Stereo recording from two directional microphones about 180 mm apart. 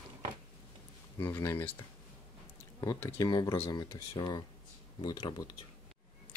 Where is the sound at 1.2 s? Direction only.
15° left (ahead or behind).